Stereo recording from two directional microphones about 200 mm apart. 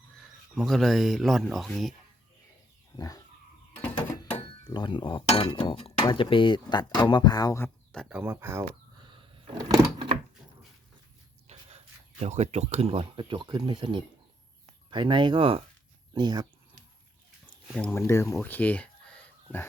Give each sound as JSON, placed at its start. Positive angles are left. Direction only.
{"t": 0.2, "sound": "speech", "side_deg": 0}
{"t": 2.9, "sound": "pig", "side_deg": 20}
{"t": 4.4, "sound": "speech", "side_deg": 25}
{"t": 7.9, "sound": "speech", "side_deg": -10}
{"t": 8.6, "sound": "a sound", "side_deg": -25}
{"t": 11.5, "sound": "a sound", "side_deg": -30}
{"t": 12.2, "sound": "speech", "side_deg": -35}
{"t": 17.7, "sound": "speech", "side_deg": 5}
{"t": 18.4, "sound": "a sound", "side_deg": 10}